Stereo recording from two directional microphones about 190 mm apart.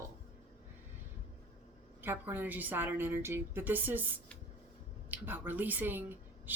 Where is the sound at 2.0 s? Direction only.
10° right (ahead or behind).